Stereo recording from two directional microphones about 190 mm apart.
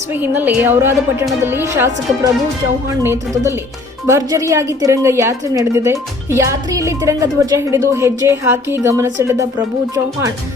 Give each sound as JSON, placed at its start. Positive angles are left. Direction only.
{"t": 0.1, "sound": "a woman's voice", "side_deg": -10}